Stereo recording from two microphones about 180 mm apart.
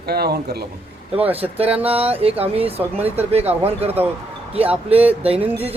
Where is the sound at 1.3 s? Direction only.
35° right (ahead or behind).